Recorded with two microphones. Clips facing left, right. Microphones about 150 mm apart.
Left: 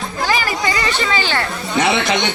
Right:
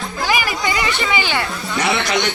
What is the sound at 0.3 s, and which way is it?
Chatter, 15° right (ahead or behind).